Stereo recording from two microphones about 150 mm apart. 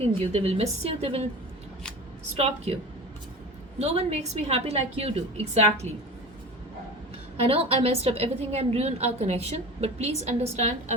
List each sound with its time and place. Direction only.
0.0 s a woman's voice: 40° right (ahead or behind)
2.3 s a woman's voice: 40° right (ahead or behind)
3.8 s a woman's voice: 45° right (ahead or behind)
7.4 s a woman's voice: 40° right (ahead or behind)